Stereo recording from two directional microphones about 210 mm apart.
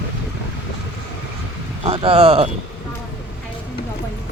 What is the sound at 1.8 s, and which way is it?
Speech, 25° right (ahead or behind).